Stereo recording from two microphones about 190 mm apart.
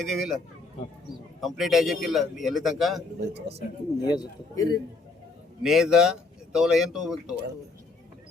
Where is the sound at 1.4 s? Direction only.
Centre (ahead or behind).